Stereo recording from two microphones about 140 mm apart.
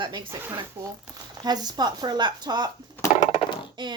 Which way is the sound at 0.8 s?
15° right (ahead or behind).